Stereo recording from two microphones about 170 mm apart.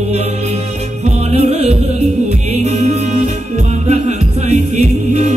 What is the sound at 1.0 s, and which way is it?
Music, 40° right (ahead or behind).